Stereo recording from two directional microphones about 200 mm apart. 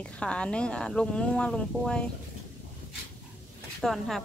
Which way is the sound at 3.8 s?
Centre (ahead or behind).